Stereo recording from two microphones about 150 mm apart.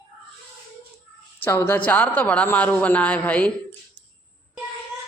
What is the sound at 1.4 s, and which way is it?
A man's voice, 15° left (ahead or behind).